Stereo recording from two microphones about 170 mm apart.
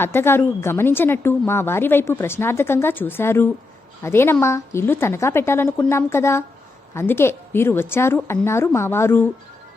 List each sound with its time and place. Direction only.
0.0 s a woman's voice: 15° left (ahead or behind)